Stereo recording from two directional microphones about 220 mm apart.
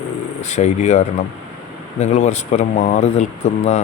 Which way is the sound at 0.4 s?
30° left (ahead or behind).